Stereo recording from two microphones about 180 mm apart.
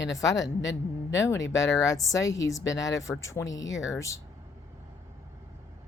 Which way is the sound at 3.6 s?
90° left.